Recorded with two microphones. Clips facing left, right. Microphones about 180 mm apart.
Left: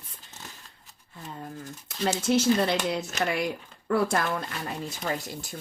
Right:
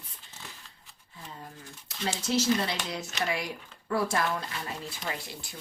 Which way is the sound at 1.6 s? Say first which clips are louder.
Left 6 dB; 45° left (ahead or behind).